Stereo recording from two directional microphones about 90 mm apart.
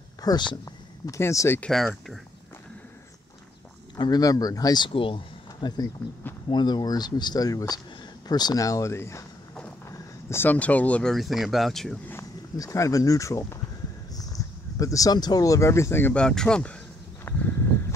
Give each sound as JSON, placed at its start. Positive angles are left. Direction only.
{"t": 0.2, "sound": "speech", "side_deg": 45}
{"t": 1.7, "sound": "speech", "side_deg": 5}
{"t": 3.9, "sound": "speech", "side_deg": 45}
{"t": 4.8, "sound": "speech", "side_deg": 75}
{"t": 6.5, "sound": "speech", "side_deg": 55}
{"t": 11.1, "sound": "speech", "side_deg": 0}
{"t": 12.5, "sound": "speech", "side_deg": 40}
{"t": 16.2, "sound": "speech", "side_deg": 10}
{"t": 17.3, "sound": "a sound", "side_deg": 35}